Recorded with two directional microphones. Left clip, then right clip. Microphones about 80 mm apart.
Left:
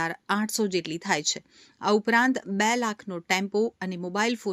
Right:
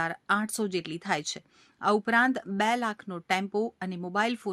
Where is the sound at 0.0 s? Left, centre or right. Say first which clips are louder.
Even; left.